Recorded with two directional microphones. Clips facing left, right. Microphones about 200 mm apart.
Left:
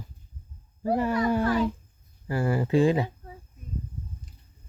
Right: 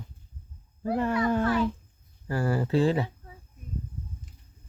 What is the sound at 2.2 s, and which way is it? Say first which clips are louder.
Speech: left 1 dB; 15° left (ahead or behind).